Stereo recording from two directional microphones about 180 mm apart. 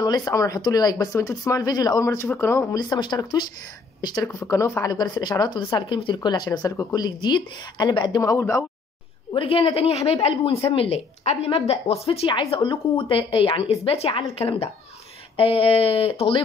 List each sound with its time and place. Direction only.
0.0 s speech: 20° left (ahead or behind)
9.3 s a woman's voice: 30° left (ahead or behind)